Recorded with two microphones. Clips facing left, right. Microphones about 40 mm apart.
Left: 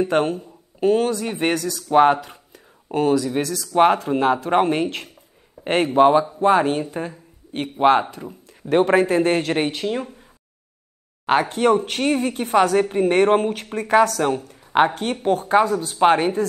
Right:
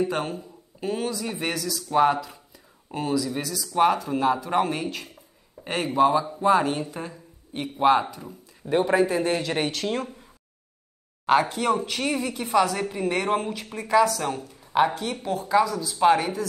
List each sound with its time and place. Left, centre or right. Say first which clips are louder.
0.1 s speech: left 9 dB; left
0.7 s speech: left 10 dB; left
3.3 s speech: left 7 dB; left
3.7 s speech: left 5 dB; left
8.6 s speech: left 5 dB; left
9.5 s speech: left 4 dB; left
9.9 s speech: left 2 dB; centre
11.2 s speech: left 4 dB; left